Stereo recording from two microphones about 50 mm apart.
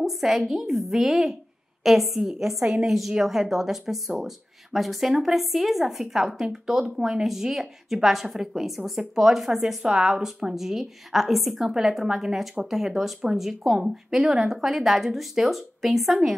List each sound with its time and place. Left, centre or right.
0.0 s a woman's voice: centre
9.8 s speech: centre
10.2 s a woman's voice: centre